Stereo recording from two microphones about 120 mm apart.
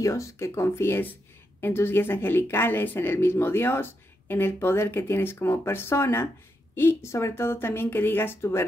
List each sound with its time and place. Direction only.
0.0 s speech: 25° left (ahead or behind)